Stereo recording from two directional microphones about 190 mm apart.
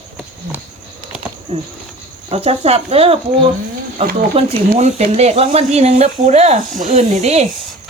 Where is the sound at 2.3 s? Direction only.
30° right (ahead or behind).